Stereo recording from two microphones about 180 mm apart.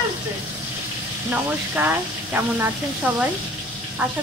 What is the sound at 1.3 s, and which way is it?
Speech, 10° right (ahead or behind).